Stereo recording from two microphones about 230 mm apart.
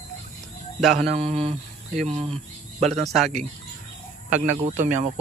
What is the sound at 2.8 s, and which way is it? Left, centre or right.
Speech, centre.